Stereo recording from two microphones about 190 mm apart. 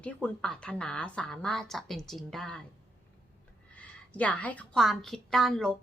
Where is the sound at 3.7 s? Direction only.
5° left (ahead or behind).